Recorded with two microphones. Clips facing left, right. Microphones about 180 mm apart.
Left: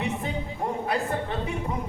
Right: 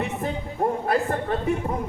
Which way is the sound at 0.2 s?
45° right (ahead or behind).